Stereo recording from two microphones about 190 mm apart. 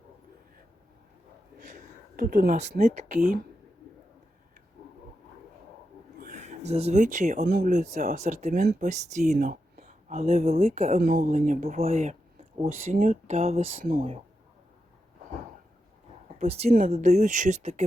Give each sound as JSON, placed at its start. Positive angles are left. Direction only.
{"t": 1.5, "sound": "speech", "side_deg": -45}
{"t": 6.1, "sound": "a sound", "side_deg": -45}
{"t": 7.4, "sound": "speech", "side_deg": -45}
{"t": 16.4, "sound": "speech", "side_deg": -35}